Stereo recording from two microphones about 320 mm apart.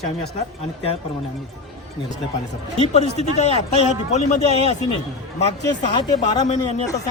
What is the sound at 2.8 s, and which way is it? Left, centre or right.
A man's voice, centre.